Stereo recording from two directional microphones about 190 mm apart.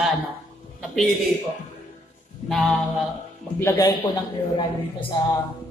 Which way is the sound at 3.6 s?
20° left (ahead or behind).